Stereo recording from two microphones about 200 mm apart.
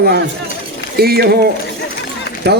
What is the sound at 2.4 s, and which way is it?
Speech, 55° right (ahead or behind).